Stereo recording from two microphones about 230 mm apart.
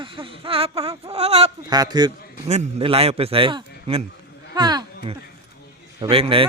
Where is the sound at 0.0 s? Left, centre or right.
Right.